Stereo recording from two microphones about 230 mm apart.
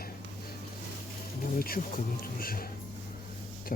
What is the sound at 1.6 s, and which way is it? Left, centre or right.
Speech, left.